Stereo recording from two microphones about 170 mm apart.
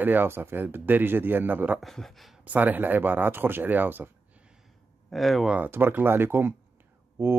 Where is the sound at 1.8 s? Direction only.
Centre (ahead or behind).